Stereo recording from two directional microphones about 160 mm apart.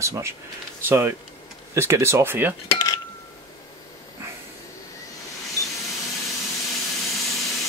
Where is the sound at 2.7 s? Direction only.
20° left (ahead or behind).